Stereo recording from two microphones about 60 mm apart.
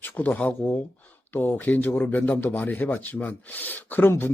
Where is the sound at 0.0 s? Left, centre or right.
Left.